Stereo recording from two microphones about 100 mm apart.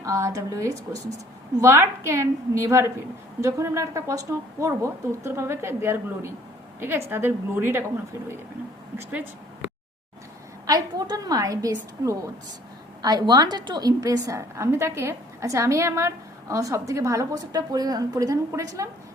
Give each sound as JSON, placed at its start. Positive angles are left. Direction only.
{"t": 0.0, "sound": "a woman's voice", "side_deg": -30}
{"t": 10.7, "sound": "a woman's voice", "side_deg": -40}